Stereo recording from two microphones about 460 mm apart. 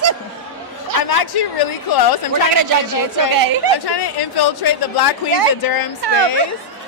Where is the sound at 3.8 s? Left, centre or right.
Left.